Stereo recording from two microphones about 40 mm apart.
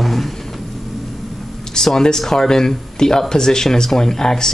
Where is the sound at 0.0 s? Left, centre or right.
Centre.